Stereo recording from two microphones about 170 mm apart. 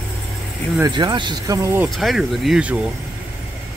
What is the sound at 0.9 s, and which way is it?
Speech, 25° right (ahead or behind).